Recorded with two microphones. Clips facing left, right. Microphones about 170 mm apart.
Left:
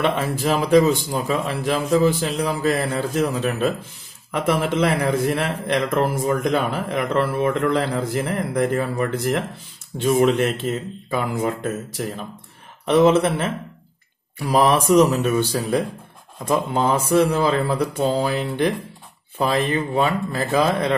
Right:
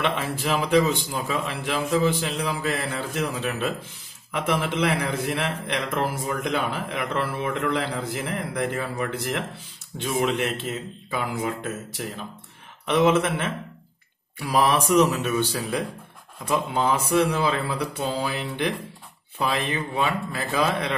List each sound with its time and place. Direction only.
0.0 s a man's voice: 40° left (ahead or behind)